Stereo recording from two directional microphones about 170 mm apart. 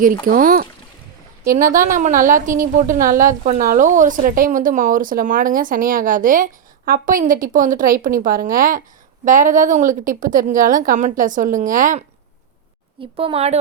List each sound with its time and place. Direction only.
0.0 s a woman's voice: 55° right (ahead or behind)
13.1 s a woman's voice: 35° right (ahead or behind)